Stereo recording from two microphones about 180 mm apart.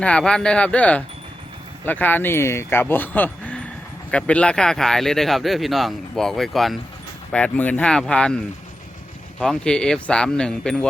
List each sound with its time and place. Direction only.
0.0 s speech: 5° left (ahead or behind)
9.4 s speech: 5° left (ahead or behind)